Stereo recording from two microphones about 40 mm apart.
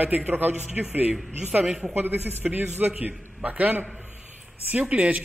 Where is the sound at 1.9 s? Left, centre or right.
Right.